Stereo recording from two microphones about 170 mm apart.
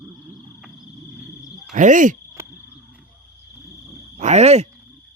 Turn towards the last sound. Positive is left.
turn(degrees=-40)  # may be behind; listen again after turning